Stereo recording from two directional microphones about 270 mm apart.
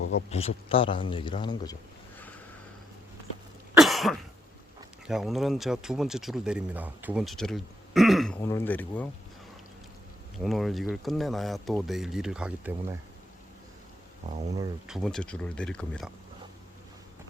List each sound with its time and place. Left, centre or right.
0.1 s speech: left
2.1 s a sound: centre
3.8 s cough: centre
5.0 s speech: centre
10.3 s speech: centre
14.8 s speech: centre